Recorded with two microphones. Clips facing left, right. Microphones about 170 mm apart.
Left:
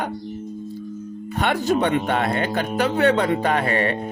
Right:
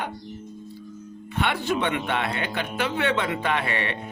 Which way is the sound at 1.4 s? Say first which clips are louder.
Left 5 dB; 40° left (ahead or behind).